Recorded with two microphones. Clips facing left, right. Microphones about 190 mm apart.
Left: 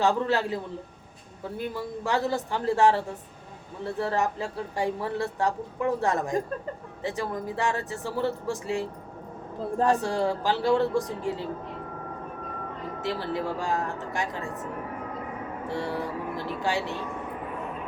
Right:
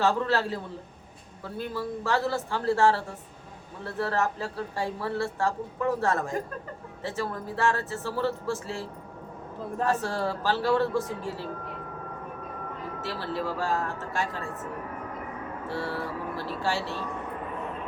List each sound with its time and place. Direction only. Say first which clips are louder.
0.0 s a woman's voice: left 1 dB; 15° left (ahead or behind)
13.0 s a woman's voice: left 3 dB; 15° left (ahead or behind)